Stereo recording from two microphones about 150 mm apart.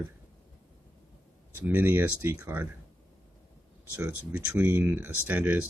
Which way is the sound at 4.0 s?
15° right (ahead or behind).